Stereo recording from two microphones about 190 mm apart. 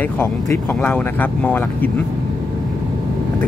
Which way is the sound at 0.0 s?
10° left (ahead or behind).